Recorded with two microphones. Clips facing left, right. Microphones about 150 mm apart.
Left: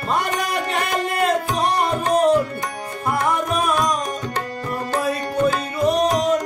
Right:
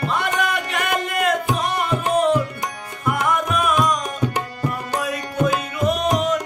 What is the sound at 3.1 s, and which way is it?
Music, 35° left (ahead or behind).